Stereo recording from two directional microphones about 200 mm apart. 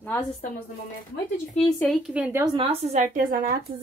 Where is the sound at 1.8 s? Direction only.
Centre (ahead or behind).